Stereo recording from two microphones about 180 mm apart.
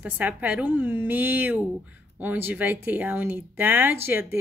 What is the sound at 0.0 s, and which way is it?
Speech, 10° right (ahead or behind).